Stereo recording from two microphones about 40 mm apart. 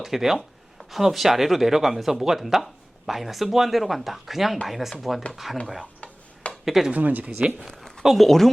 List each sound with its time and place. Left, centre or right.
0.0 s speech: centre
5.8 s tick-tock: left
6.7 s speech: centre
6.9 s speech: right
8.0 s speech: centre